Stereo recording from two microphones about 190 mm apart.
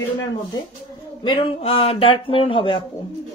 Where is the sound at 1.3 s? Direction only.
30° left (ahead or behind).